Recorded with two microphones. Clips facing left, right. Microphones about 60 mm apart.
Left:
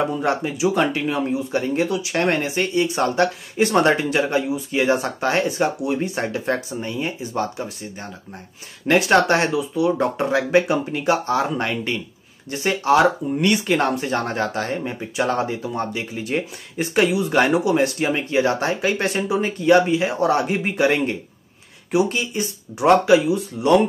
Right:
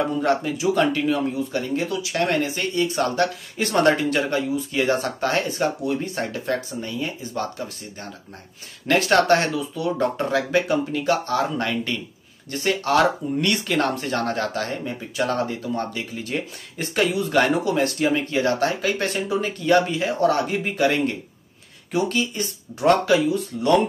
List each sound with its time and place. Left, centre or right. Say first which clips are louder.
0.0 s speech: even; centre
17.9 s speech: left 1 dB; left